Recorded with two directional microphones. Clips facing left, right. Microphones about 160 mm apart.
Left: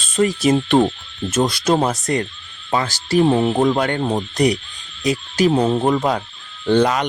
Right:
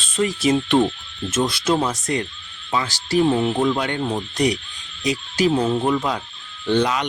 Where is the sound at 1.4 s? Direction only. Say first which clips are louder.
Left 3 dB; 40° left (ahead or behind).